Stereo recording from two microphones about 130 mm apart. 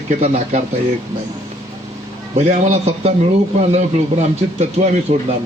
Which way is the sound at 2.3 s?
60° right (ahead or behind).